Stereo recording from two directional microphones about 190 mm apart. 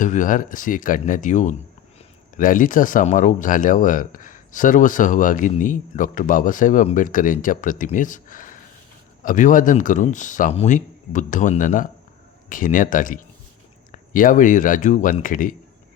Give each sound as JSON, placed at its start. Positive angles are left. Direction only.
{"t": 0.0, "sound": "speech", "side_deg": 40}